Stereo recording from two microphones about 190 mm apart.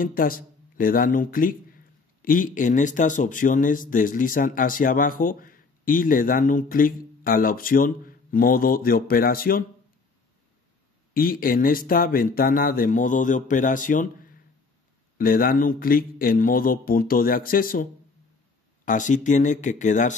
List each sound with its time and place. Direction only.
0.0 s speech: 50° left (ahead or behind)
11.1 s speech: 50° left (ahead or behind)
18.9 s speech: 40° left (ahead or behind)